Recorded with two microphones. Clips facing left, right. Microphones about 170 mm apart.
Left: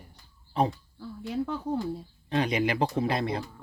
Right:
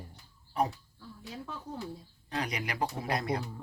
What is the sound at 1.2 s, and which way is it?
Speech, 70° left (ahead or behind).